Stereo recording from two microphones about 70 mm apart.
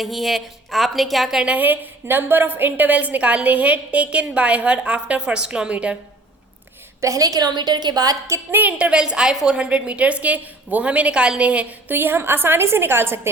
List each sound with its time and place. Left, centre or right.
0.0 s a woman's voice: centre
1.5 s a woman's voice: right
7.0 s a woman's voice: right
8.4 s a woman's voice: right
11.9 s a woman's voice: right